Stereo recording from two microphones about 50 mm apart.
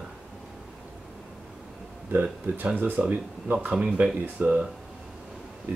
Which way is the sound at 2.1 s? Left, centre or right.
Right.